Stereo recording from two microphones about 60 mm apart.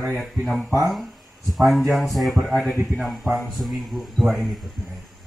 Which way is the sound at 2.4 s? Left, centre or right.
Centre.